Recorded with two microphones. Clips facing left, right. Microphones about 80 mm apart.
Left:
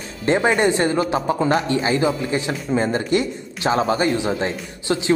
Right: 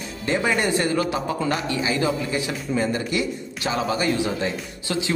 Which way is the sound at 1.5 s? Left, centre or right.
Left.